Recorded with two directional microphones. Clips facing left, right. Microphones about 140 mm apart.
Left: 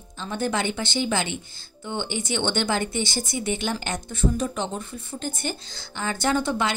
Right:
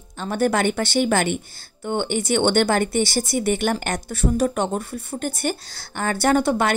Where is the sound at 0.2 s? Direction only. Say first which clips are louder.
Right 6 dB; 60° right (ahead or behind).